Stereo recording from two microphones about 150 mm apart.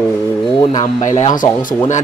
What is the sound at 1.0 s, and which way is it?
Speech, 55° left (ahead or behind).